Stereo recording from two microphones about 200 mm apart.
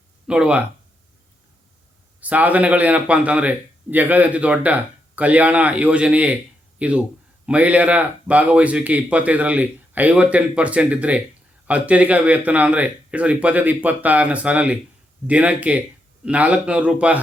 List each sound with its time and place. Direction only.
0.3 s speech: 5° right (ahead or behind)
2.2 s a man's voice: 5° right (ahead or behind)